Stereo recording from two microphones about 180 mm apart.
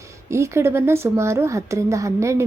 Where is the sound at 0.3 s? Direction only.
15° right (ahead or behind).